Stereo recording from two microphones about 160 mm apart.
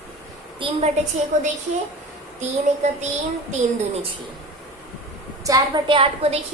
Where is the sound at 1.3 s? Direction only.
50° right (ahead or behind).